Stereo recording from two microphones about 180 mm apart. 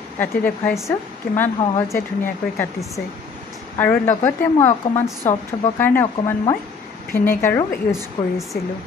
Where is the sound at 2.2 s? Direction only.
15° left (ahead or behind).